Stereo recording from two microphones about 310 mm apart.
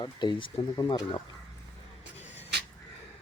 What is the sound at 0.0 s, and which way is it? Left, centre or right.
Speech, centre.